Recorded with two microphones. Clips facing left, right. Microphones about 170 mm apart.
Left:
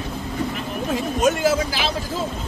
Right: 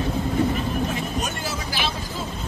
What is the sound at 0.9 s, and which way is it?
Speech, 90° left.